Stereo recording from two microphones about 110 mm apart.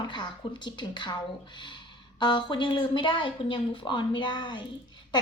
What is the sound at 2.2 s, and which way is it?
A woman's voice, 45° left (ahead or behind).